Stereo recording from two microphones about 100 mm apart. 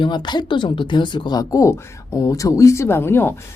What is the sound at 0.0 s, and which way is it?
Speech, 50° left (ahead or behind).